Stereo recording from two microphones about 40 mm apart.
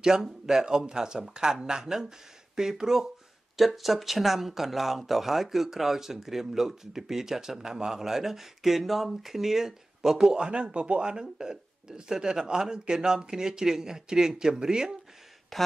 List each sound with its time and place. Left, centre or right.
0.0 s speech: centre
15.5 s speech: centre